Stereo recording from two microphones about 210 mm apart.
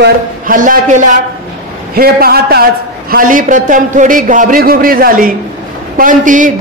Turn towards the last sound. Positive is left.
turn(degrees=-40)  # may be behind; listen again after turning